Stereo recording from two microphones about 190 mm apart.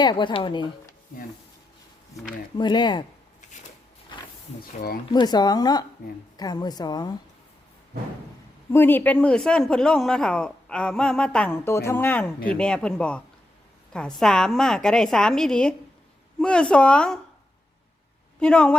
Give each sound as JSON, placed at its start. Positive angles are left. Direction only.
{"t": 0.0, "sound": "a woman's voice", "side_deg": 25}
{"t": 2.6, "sound": "a woman's voice", "side_deg": 25}
{"t": 4.6, "sound": "speech", "side_deg": 55}
{"t": 5.1, "sound": "a woman's voice", "side_deg": 20}
{"t": 8.7, "sound": "speech", "side_deg": 10}
{"t": 18.3, "sound": "speech", "side_deg": 5}